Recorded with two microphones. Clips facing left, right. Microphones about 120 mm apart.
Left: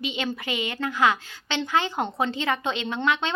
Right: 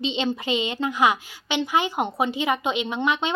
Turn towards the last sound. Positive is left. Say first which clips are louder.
# right 1 dB
turn(degrees=-15)  # may be behind; listen again after turning